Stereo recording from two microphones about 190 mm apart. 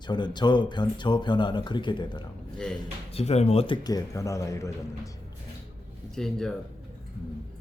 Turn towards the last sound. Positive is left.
turn(degrees=5)  # may be behind; listen again after turning